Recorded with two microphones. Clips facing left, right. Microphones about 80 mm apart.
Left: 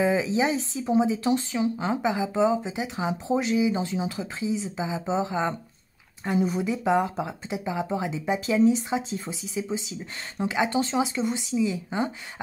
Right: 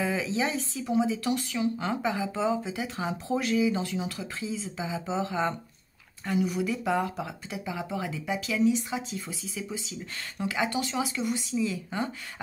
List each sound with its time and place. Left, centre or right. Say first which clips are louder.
0.0 s speech: left 5 dB; left
6.2 s speech: left 3 dB; left
9.3 s speech: left 6 dB; left